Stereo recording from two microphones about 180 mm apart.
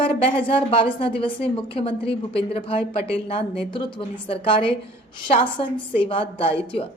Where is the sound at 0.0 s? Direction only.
30° left (ahead or behind).